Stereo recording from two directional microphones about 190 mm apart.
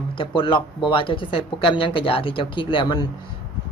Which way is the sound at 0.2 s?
25° left (ahead or behind).